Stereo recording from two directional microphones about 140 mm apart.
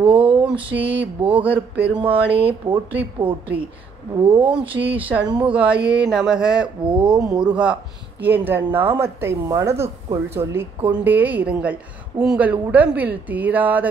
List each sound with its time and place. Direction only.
0.0 s mantra: 40° right (ahead or behind)
0.4 s a woman's voice: 10° right (ahead or behind)
4.2 s speech: 40° right (ahead or behind)
4.5 s a woman's voice: 10° right (ahead or behind)